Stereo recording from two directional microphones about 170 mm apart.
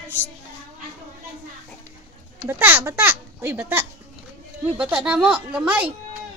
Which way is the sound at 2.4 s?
15° right (ahead or behind).